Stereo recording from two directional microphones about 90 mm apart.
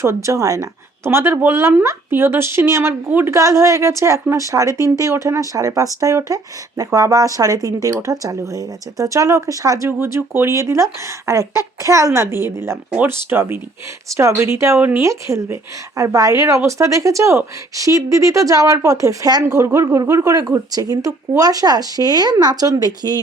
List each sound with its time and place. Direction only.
0.0 s a woman's voice: 35° right (ahead or behind)
14.8 s a woman's voice: 20° right (ahead or behind)
15.0 s speech: 35° right (ahead or behind)